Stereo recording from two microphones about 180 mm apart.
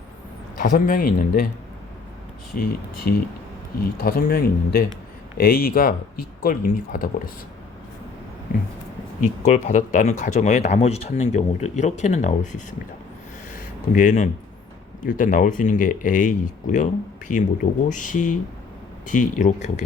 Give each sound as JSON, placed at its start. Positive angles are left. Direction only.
{"t": 0.6, "sound": "speech", "side_deg": 45}
{"t": 2.6, "sound": "speech", "side_deg": 60}
{"t": 9.2, "sound": "speech", "side_deg": 40}
{"t": 13.9, "sound": "speech", "side_deg": 45}